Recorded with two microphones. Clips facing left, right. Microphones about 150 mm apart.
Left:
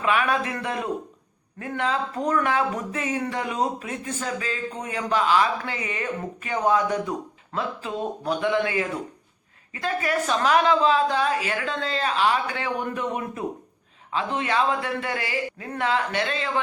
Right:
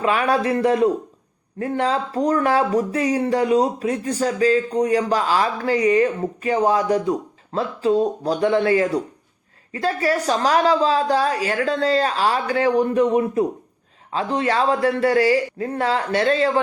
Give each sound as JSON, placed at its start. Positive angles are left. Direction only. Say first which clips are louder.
{"t": 0.0, "sound": "speech", "louder": "right 4 dB", "side_deg": -35}